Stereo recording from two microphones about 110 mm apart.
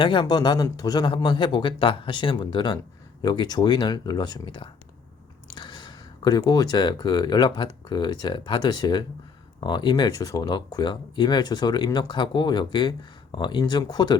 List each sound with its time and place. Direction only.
0.0 s speech: 45° left (ahead or behind)